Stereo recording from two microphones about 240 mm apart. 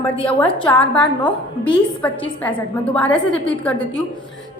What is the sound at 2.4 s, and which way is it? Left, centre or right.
A woman's voice, centre.